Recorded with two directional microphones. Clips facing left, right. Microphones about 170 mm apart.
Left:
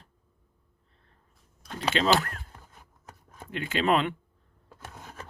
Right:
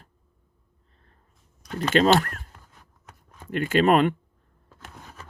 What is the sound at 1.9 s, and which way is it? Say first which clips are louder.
Speech: right 5 dB; 50° right (ahead or behind).